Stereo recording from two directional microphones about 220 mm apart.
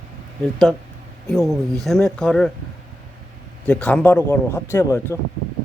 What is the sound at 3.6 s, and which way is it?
A man's voice, 5° left (ahead or behind).